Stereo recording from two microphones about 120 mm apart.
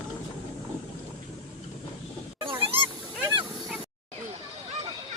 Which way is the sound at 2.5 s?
50° right (ahead or behind).